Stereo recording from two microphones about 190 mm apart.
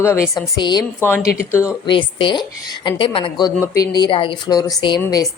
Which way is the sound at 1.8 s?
25° left (ahead or behind).